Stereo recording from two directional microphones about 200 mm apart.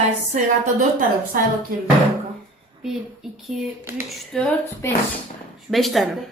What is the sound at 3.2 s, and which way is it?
Speech, centre (ahead or behind).